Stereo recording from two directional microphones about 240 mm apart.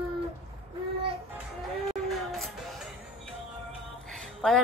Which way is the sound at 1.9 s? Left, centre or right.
Centre.